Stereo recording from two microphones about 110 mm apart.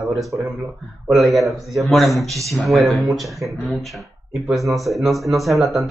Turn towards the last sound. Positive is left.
turn(degrees=0)  # may be behind; listen again after turning